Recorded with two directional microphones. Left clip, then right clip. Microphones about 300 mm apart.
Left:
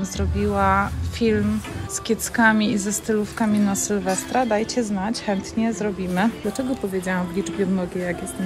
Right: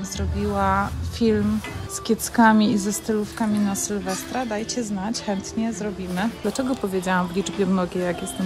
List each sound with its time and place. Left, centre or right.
0.0 s a woman's voice: centre